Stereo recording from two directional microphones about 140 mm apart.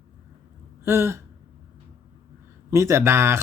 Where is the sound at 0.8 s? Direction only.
20° right (ahead or behind).